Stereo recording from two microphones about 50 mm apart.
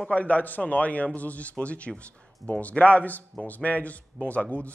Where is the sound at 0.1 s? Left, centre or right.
Left.